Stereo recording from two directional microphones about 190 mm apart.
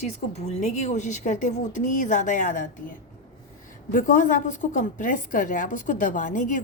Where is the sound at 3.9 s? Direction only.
45° left (ahead or behind).